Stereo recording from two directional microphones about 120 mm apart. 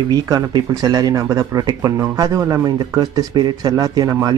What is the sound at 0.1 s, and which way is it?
Speech, 35° right (ahead or behind).